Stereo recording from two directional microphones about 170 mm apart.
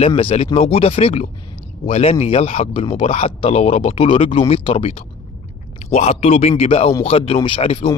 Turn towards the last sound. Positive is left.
turn(degrees=30)  # may be behind; listen again after turning